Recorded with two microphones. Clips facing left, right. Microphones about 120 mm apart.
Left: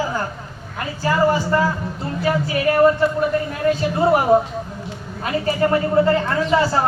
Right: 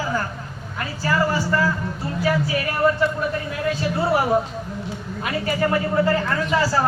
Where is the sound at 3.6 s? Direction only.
40° left (ahead or behind).